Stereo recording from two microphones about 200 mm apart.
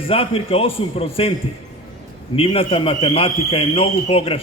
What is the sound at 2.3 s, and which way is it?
A man's voice, 30° left (ahead or behind).